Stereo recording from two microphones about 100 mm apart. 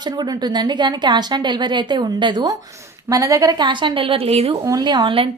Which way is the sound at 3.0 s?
35° right (ahead or behind).